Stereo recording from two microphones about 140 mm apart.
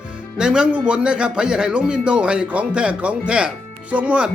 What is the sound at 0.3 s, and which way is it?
Speech, 5° right (ahead or behind).